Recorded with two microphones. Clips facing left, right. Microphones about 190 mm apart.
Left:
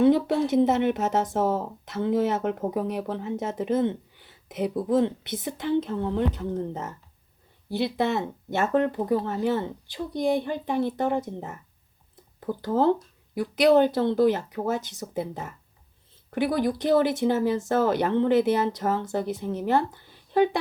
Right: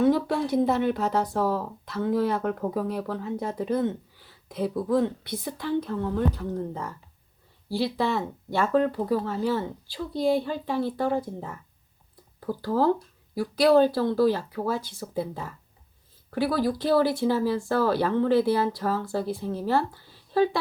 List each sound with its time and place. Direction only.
0.0 s speech: 20° left (ahead or behind)
12.1 s a sound: 20° left (ahead or behind)
13.3 s speech: 20° left (ahead or behind)